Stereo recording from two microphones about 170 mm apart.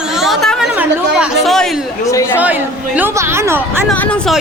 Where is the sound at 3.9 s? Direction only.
5° left (ahead or behind).